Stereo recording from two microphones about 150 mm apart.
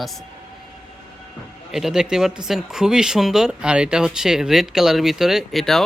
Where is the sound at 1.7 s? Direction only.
5° right (ahead or behind).